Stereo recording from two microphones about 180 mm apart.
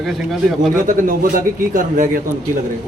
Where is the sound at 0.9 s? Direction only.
50° right (ahead or behind).